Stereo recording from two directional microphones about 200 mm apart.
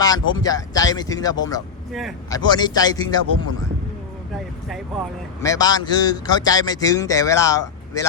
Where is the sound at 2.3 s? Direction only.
20° left (ahead or behind).